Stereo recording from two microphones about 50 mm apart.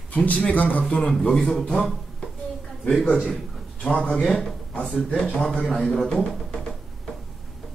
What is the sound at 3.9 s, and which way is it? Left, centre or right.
Speech, left.